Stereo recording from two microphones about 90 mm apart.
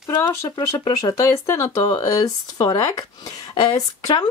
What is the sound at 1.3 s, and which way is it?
Speech, 30° left (ahead or behind).